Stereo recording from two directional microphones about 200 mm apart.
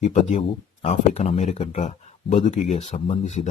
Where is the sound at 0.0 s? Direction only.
35° left (ahead or behind).